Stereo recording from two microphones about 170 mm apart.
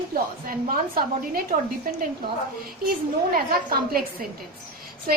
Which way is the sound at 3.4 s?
60° right (ahead or behind).